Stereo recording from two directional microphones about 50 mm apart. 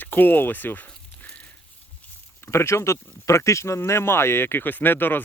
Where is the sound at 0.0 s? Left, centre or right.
Left.